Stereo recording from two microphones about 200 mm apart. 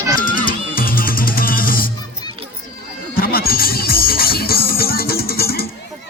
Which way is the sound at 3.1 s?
50° left (ahead or behind).